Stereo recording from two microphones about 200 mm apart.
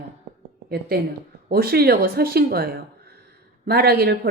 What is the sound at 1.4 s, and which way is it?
A woman's voice, 50° right (ahead or behind).